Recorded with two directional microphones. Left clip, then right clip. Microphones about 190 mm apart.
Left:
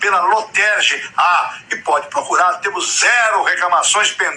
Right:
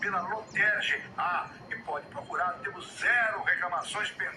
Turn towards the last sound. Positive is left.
turn(degrees=50)  # may be behind; listen again after turning